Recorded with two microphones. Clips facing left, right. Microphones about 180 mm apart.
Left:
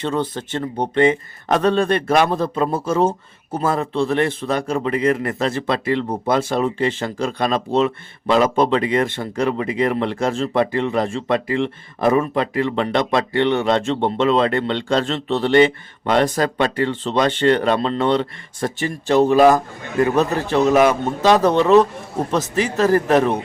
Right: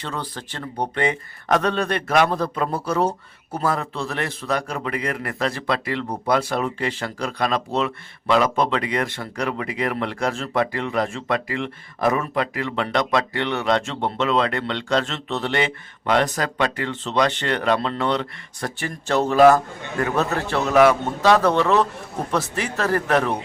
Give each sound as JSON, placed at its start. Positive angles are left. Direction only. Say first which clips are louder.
{"t": 0.0, "sound": "speech", "louder": "left 8 dB", "side_deg": 25}